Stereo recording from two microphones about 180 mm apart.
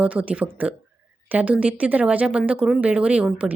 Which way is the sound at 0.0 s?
10° right (ahead or behind).